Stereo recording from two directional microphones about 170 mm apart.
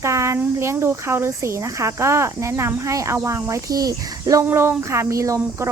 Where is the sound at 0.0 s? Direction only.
15° right (ahead or behind).